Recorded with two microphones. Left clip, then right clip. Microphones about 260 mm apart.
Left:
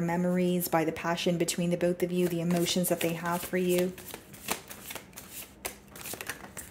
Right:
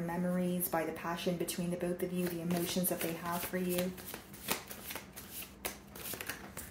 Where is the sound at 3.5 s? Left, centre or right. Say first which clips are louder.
Left 8 dB; left.